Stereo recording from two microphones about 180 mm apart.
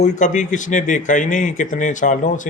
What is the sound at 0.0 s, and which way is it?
Speech, 45° left (ahead or behind).